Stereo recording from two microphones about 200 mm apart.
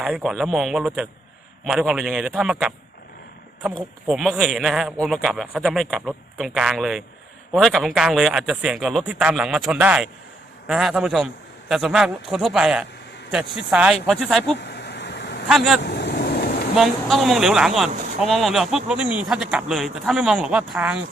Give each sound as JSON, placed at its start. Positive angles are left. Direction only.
{"t": 0.0, "sound": "a man's voice", "side_deg": -5}
{"t": 4.1, "sound": "a man's voice", "side_deg": 0}
{"t": 14.6, "sound": "a sound", "side_deg": 55}
{"t": 15.4, "sound": "a man's voice", "side_deg": 0}
{"t": 15.8, "sound": "vehicle", "side_deg": 55}
{"t": 16.7, "sound": "a man's voice", "side_deg": 0}